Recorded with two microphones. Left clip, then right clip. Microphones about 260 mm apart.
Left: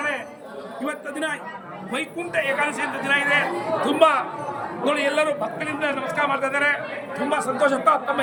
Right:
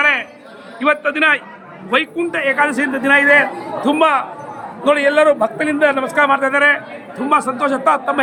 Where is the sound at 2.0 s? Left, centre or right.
Centre.